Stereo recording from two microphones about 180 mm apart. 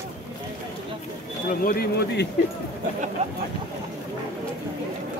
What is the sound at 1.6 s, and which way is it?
Speech, 55° left (ahead or behind).